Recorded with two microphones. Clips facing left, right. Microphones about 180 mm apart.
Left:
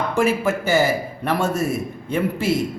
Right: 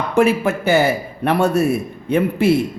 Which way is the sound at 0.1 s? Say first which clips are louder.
Right 6 dB; 65° right (ahead or behind).